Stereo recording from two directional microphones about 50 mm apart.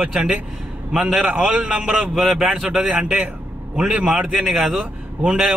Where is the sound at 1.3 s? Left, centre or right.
Right.